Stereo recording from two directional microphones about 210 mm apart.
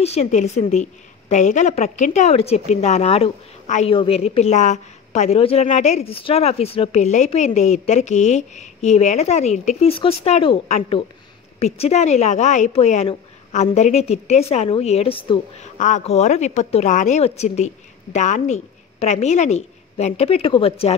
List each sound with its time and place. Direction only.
0.0 s a woman's voice: 30° left (ahead or behind)